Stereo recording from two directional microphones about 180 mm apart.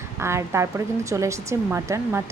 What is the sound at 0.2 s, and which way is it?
A woman's voice, 15° right (ahead or behind).